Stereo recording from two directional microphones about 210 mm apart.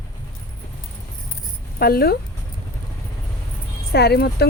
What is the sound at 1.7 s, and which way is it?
Speech, 45° left (ahead or behind).